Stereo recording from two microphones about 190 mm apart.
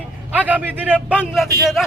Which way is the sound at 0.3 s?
10° right (ahead or behind).